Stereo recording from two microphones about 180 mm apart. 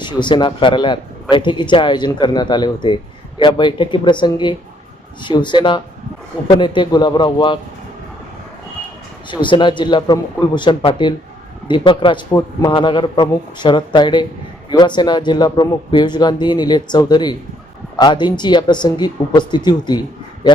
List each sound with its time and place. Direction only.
0.0 s a man's voice: 25° left (ahead or behind)
9.3 s a man's voice: 25° left (ahead or behind)